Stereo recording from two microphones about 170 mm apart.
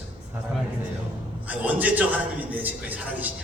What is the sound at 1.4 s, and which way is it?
A man's voice, 10° right (ahead or behind).